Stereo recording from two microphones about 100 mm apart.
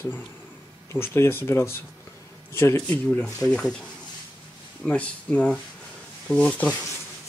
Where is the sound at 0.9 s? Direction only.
25° left (ahead or behind).